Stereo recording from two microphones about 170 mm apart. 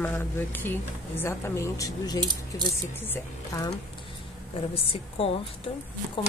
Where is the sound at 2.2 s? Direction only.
25° right (ahead or behind).